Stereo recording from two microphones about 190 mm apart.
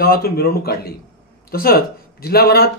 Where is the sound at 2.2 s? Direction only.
55° left (ahead or behind).